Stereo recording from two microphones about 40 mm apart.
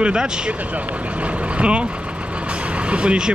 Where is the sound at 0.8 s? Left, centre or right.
Right.